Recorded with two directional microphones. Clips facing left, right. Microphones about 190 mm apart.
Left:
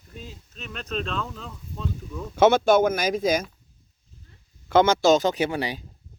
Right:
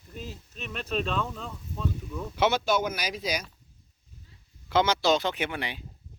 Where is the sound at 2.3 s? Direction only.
50° left (ahead or behind).